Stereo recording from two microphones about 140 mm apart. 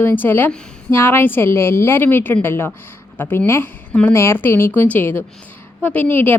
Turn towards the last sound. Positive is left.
turn(degrees=15)  # may be behind; listen again after turning